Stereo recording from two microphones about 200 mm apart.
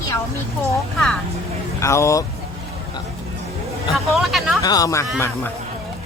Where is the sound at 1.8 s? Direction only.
15° left (ahead or behind).